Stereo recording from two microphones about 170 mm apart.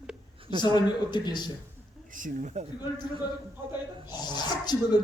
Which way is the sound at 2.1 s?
50° right (ahead or behind).